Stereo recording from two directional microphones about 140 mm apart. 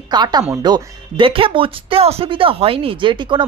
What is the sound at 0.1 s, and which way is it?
Speech, 30° right (ahead or behind).